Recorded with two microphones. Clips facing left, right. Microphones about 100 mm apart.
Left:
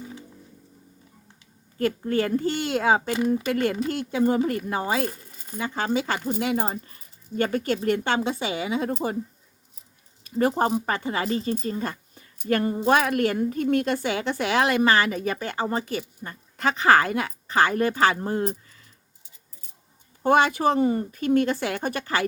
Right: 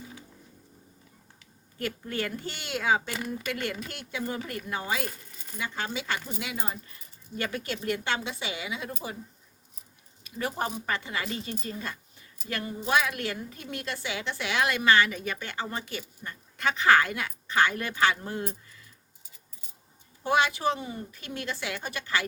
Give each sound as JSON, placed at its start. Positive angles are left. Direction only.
{"t": 1.8, "sound": "speech", "side_deg": 40}
{"t": 3.2, "sound": "speech", "side_deg": 20}
{"t": 3.5, "sound": "speech", "side_deg": 35}
{"t": 10.2, "sound": "speech", "side_deg": 40}
{"t": 20.2, "sound": "speech", "side_deg": 45}